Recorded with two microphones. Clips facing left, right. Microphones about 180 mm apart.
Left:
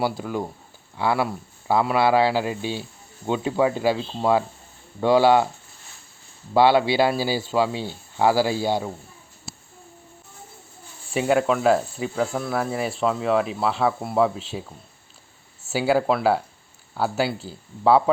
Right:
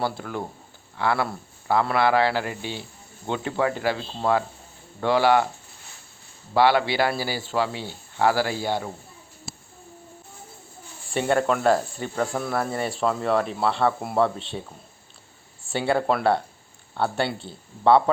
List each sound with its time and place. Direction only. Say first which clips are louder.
0.0 s speech: left 3 dB; 15° left (ahead or behind)
6.5 s speech: left 2 dB; 15° left (ahead or behind)
11.1 s speech: left 2 dB; 5° left (ahead or behind)
15.7 s speech: left 2 dB; 5° left (ahead or behind)